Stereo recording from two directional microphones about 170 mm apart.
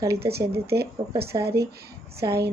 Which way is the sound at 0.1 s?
65° right (ahead or behind).